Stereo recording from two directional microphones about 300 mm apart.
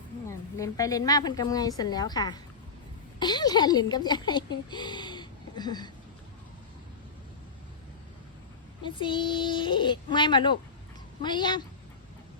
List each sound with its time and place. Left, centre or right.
0.3 s a woman's voice: centre
8.8 s a woman's voice: centre